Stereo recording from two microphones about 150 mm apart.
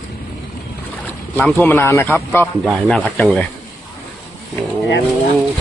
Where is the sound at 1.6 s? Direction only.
15° left (ahead or behind).